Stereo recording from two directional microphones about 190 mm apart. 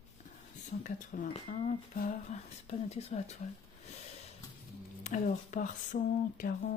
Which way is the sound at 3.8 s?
35° left (ahead or behind).